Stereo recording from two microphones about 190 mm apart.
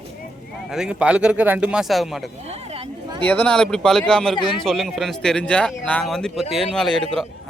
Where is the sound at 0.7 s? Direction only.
5° right (ahead or behind).